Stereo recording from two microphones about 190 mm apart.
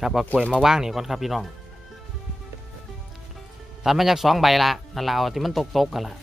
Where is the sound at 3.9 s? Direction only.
Centre (ahead or behind).